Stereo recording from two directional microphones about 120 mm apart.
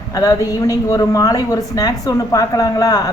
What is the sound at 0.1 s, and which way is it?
Speech, 30° left (ahead or behind).